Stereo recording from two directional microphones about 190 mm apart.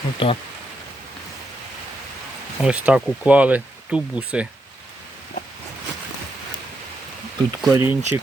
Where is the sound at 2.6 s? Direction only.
5° right (ahead or behind).